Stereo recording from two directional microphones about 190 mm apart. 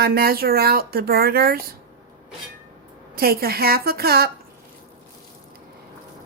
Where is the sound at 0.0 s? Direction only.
55° right (ahead or behind).